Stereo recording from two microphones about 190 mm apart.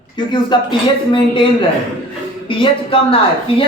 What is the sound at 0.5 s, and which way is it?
Speech, 25° left (ahead or behind).